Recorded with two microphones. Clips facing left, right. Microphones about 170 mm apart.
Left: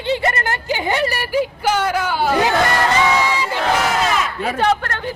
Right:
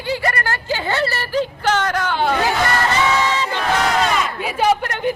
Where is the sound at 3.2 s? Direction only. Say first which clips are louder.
Even; 10° left (ahead or behind).